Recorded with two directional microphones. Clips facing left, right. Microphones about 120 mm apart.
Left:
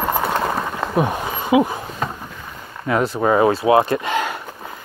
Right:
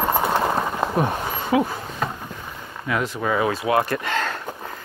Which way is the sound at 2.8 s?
35° left (ahead or behind).